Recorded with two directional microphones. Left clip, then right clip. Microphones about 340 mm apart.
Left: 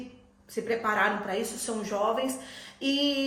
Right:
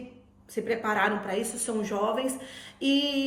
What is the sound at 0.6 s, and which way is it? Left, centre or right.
A woman's voice, centre.